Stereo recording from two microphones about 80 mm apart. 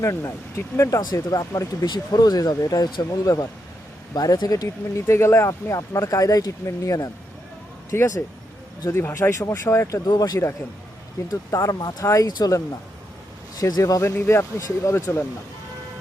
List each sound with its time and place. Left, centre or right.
0.0 s speech: left
4.9 s speech: left
7.9 s speech: left
10.1 s speech: left
11.8 s speech: left
12.0 s speech: left
14.0 s speech: left